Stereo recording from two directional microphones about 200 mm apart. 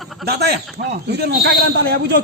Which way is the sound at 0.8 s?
45° right (ahead or behind).